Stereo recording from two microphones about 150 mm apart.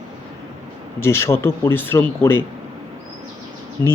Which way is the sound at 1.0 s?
20° left (ahead or behind).